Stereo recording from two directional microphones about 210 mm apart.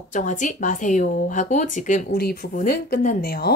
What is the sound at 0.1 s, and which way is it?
A woman's voice, 35° left (ahead or behind).